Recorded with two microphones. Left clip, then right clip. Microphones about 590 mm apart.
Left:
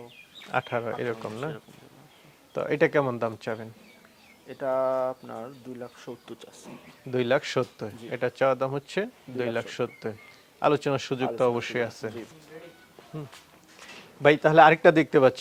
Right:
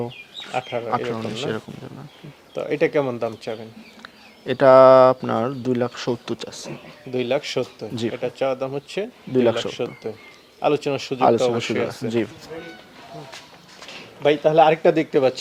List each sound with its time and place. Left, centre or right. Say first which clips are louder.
0.5 s speech: right 4 dB; left
2.6 s speech: right 3 dB; left
4.4 s speech: right 16 dB; right
7.1 s speech: right 2 dB; left
14.2 s speech: right 2 dB; left